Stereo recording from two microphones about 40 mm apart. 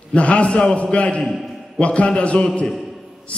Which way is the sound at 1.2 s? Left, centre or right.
Centre.